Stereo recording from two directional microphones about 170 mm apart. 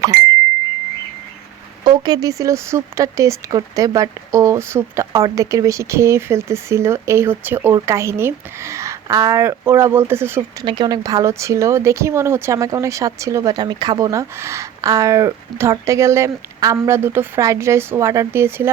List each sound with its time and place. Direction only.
1.8 s speech: 25° right (ahead or behind)
10.7 s speech: 25° right (ahead or behind)